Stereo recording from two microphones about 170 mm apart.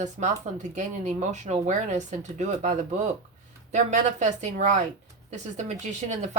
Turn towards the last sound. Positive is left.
turn(degrees=-45)  # may be behind; listen again after turning